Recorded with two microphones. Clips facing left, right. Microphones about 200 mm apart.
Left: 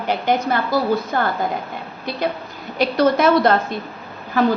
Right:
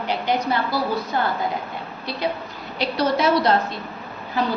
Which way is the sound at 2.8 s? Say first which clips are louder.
Left 5 dB; 50° left (ahead or behind).